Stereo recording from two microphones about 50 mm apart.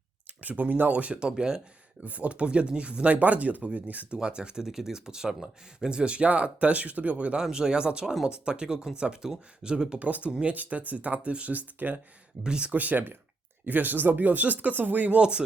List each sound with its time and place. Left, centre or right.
0.4 s speech: right; by 1.6 s centre
2.0 s speech: right
4.2 s speech: centre
7.4 s speech: centre
10.0 s speech: right
12.4 s speech: centre
12.7 s speech: right
15.2 s speech: centre